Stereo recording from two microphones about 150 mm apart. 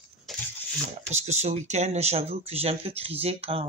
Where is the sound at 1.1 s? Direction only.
50° right (ahead or behind).